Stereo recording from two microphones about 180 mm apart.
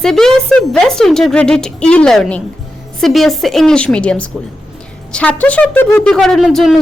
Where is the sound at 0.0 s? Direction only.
Centre (ahead or behind).